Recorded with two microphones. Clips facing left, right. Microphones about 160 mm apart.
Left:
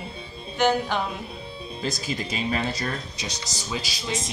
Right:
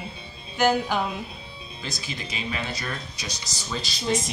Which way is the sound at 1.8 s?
45° left (ahead or behind).